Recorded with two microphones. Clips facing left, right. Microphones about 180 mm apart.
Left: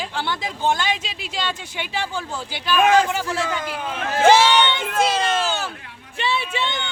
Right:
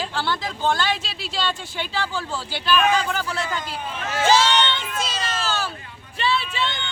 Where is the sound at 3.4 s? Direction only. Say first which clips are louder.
Left 3 dB; 90° left; by 5.2 s 55° left (ahead or behind).